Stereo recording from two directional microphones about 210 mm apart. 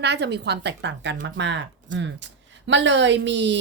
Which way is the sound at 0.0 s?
55° right (ahead or behind).